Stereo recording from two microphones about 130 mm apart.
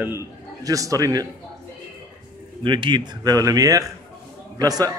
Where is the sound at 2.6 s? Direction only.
35° right (ahead or behind).